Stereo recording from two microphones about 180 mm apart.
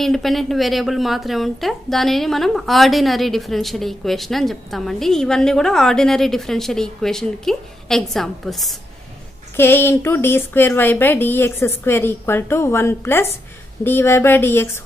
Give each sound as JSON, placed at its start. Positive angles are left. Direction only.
{"t": 0.0, "sound": "a woman's voice", "side_deg": 0}
{"t": 9.6, "sound": "speech", "side_deg": 10}